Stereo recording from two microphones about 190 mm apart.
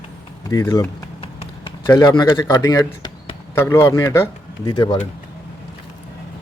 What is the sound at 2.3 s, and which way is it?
Speech, 20° left (ahead or behind).